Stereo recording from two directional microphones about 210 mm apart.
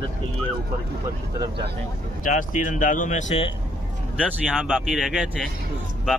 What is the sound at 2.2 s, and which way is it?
Speech, 40° left (ahead or behind).